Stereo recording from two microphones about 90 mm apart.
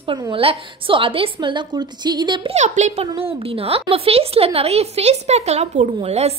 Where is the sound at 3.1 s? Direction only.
90° right.